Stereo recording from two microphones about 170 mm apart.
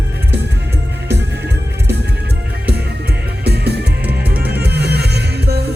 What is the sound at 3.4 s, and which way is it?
Music, 75° right (ahead or behind).